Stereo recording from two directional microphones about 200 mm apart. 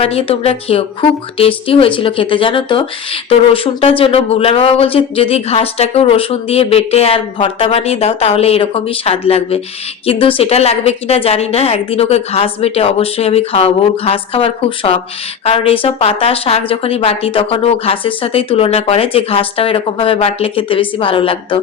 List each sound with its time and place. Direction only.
0.0 s speech: 30° left (ahead or behind)